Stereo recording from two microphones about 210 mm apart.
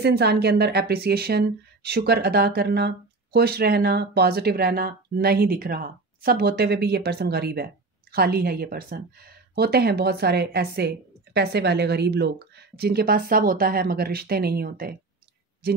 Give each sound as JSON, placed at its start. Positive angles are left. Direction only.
{"t": 0.0, "sound": "speech", "side_deg": -50}